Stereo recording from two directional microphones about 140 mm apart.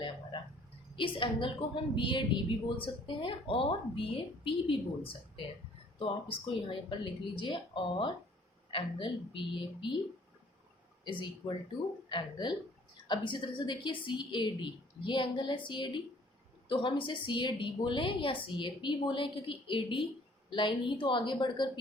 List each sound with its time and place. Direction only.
0.9 s a woman's voice: 35° left (ahead or behind)
11.0 s a woman's voice: 35° left (ahead or behind)